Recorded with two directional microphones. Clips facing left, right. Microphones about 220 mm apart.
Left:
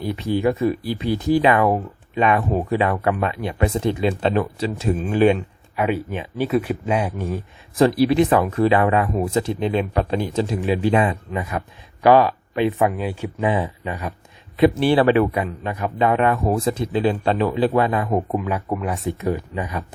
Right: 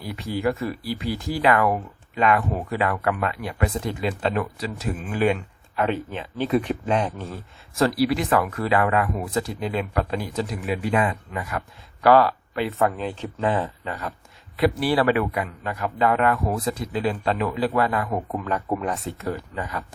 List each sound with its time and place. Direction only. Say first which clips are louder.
0.0 s speech: left 5 dB; 20° left (ahead or behind)
5.7 s speech: left 3 dB; 10° left (ahead or behind)
18.3 s speech: left 2 dB; 10° left (ahead or behind)